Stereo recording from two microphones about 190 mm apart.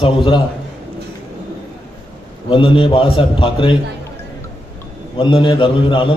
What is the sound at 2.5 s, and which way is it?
A man's voice, 25° left (ahead or behind).